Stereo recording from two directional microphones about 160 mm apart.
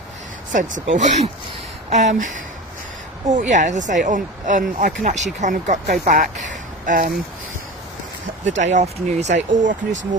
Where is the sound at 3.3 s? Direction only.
50° right (ahead or behind).